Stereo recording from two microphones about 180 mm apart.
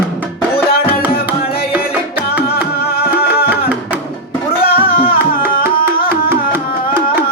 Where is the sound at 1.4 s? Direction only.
60° left (ahead or behind).